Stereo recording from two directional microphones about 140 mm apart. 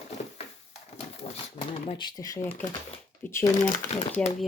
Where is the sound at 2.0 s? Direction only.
30° left (ahead or behind).